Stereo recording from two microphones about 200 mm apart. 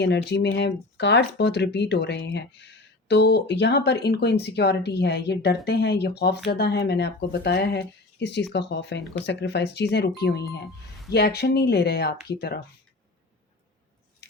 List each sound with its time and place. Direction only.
0.0 s speech: 60° left (ahead or behind)